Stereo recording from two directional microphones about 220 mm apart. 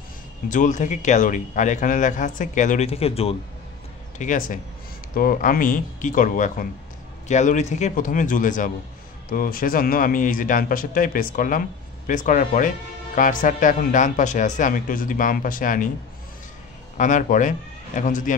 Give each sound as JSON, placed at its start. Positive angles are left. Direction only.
{"t": 0.5, "sound": "speech", "side_deg": 35}
{"t": 16.9, "sound": "speech", "side_deg": 35}